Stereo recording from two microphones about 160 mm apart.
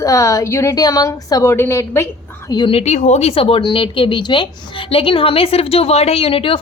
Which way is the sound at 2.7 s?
45° left (ahead or behind).